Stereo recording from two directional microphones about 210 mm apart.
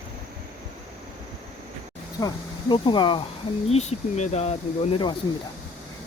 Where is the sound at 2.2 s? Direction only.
20° left (ahead or behind).